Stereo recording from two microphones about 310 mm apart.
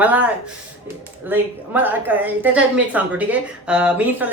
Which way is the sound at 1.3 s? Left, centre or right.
Centre.